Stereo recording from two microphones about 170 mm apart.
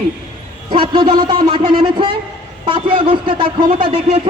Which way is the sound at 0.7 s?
30° right (ahead or behind).